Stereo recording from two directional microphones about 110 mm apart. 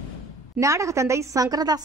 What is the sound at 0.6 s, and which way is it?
A woman's voice, 30° right (ahead or behind).